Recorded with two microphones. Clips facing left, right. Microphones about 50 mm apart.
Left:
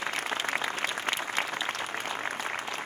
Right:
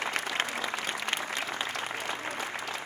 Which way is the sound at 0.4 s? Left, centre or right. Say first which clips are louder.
Left 3 dB; left.